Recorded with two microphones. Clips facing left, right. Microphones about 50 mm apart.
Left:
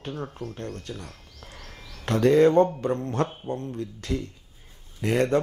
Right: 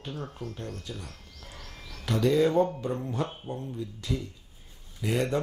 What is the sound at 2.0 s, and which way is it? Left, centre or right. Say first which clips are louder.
Speech: left 6 dB; left.